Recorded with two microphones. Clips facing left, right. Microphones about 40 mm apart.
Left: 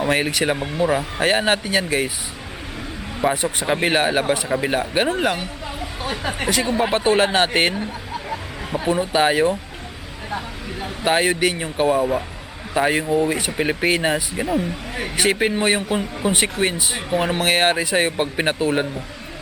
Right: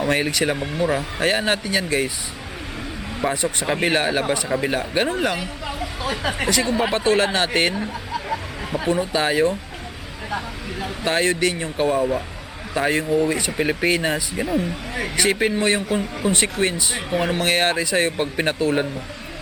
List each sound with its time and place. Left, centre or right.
0.0 s speech: centre
3.3 s a man's voice: left
10.8 s a man's voice: centre
17.1 s speech: centre